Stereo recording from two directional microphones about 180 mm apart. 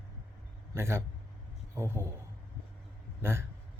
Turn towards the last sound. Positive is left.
turn(degrees=-15)  # may be behind; listen again after turning